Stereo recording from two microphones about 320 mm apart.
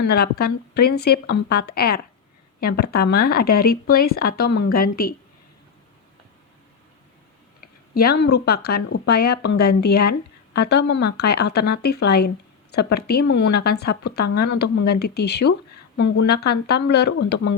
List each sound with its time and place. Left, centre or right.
0.0 s speech: left
7.9 s a woman's voice: left